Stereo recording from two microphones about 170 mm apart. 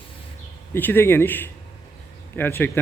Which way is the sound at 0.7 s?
10° left (ahead or behind).